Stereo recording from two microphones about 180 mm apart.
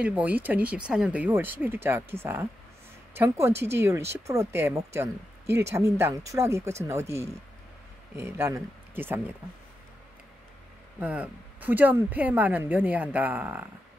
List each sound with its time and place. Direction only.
0.0 s speech: 10° right (ahead or behind)
11.0 s speech: 10° right (ahead or behind)